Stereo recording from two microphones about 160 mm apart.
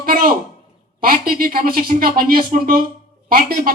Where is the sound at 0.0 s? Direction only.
60° right (ahead or behind).